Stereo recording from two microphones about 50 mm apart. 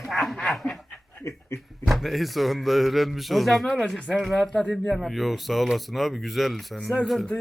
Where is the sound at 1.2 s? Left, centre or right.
Left.